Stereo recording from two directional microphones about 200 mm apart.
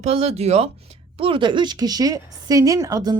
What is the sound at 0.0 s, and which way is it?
A woman's voice, 30° right (ahead or behind).